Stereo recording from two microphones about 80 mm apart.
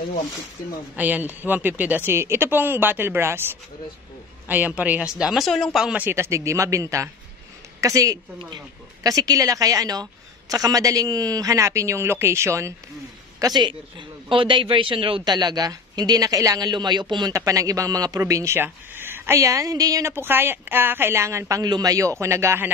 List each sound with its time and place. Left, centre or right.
0.9 s speech: right; by 5.9 s centre
6.1 s a man's voice: right
13.4 s a man's voice: right
17.3 s speech: right
18.2 s a man's voice: right
18.6 s speech: right
20.1 s speech: right
21.6 s a man's voice: right